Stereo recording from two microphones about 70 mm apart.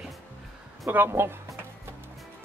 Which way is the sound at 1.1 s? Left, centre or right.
Right.